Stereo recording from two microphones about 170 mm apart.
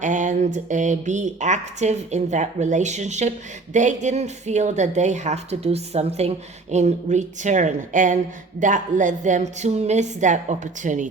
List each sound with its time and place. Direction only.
0.0 s speech: 45° right (ahead or behind)